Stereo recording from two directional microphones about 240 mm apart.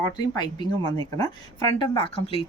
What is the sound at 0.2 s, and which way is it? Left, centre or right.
Speech, centre.